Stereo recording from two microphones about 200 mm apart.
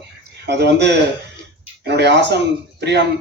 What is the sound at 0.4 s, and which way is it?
A man's voice, 60° right (ahead or behind).